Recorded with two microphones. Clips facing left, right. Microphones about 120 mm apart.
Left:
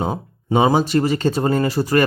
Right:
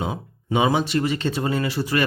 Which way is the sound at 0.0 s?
40° left (ahead or behind).